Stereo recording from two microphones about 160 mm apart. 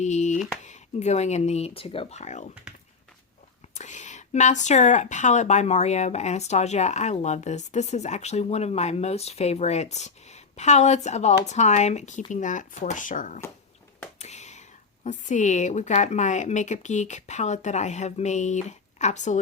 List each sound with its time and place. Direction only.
0.0 s speech: 45° left (ahead or behind)
3.8 s speech: 50° left (ahead or behind)
14.2 s whispering: 45° left (ahead or behind)
15.3 s speech: 50° left (ahead or behind)